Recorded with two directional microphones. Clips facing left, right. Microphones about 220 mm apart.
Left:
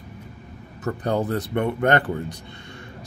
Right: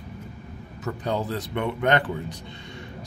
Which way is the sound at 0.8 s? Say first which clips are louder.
Left 4 dB; 55° left (ahead or behind).